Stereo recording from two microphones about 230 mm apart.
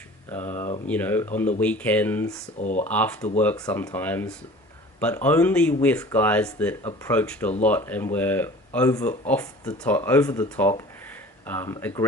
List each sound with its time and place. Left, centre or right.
0.3 s speech: centre
2.6 s speech: left
2.8 s speech: centre
3.2 s speech: left
3.4 s speech: centre